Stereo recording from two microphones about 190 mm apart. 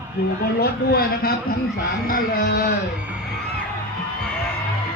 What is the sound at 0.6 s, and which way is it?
Speech, 55° left (ahead or behind).